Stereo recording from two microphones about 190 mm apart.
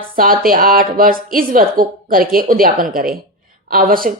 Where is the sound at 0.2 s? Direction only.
50° right (ahead or behind).